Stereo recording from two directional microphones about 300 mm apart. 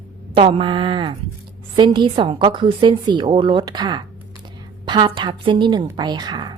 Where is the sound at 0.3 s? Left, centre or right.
Centre.